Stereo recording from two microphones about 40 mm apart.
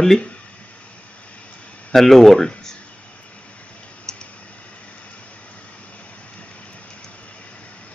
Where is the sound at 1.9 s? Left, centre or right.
Centre.